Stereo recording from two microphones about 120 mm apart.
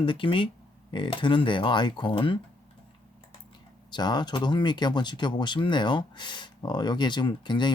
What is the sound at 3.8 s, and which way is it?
Speech, 35° left (ahead or behind).